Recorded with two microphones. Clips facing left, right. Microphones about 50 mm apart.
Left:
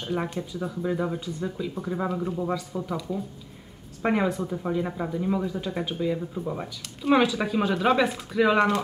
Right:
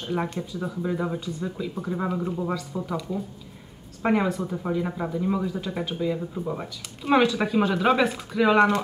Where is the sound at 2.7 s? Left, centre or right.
Centre.